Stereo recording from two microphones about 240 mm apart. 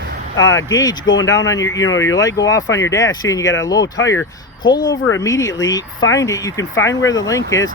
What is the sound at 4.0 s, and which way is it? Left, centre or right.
Speech, left.